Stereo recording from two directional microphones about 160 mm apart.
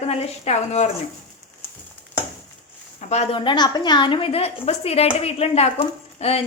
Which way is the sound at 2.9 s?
45° left (ahead or behind).